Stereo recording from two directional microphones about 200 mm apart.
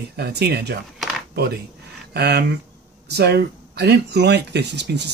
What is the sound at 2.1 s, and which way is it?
Speech, 55° right (ahead or behind).